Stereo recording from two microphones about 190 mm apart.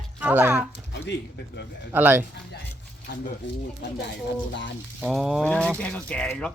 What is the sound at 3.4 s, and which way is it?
Speech, 75° left (ahead or behind).